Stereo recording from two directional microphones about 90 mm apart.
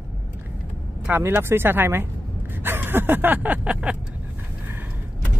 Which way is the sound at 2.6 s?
20° right (ahead or behind).